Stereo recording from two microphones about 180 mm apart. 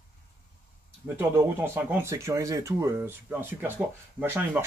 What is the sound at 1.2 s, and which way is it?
Speech, 15° right (ahead or behind).